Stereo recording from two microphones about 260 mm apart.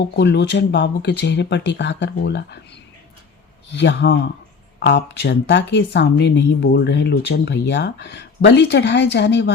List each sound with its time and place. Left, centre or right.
0.0 s speech: left
3.8 s speech: left